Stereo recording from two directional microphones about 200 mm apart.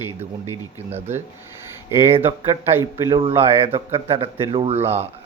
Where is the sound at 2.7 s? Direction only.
10° right (ahead or behind).